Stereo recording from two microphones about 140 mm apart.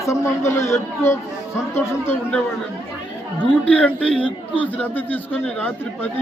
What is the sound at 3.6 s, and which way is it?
Speech, 10° left (ahead or behind).